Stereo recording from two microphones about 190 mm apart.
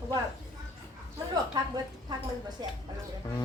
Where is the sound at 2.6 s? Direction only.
25° right (ahead or behind).